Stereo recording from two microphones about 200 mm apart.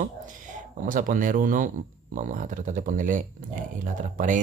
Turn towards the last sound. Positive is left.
turn(degrees=-40)  # may be behind; listen again after turning